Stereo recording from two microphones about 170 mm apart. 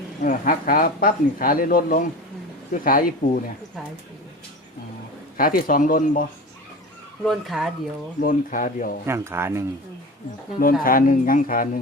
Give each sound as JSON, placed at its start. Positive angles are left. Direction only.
{"t": 0.2, "sound": "speech", "side_deg": 55}
{"t": 5.4, "sound": "speech", "side_deg": 55}
{"t": 7.3, "sound": "speech", "side_deg": 0}
{"t": 8.2, "sound": "speech", "side_deg": 50}
{"t": 9.0, "sound": "speech", "side_deg": -15}
{"t": 10.6, "sound": "speech", "side_deg": 55}